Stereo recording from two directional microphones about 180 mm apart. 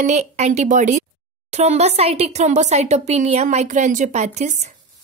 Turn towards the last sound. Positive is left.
turn(degrees=-40)  # may be behind; listen again after turning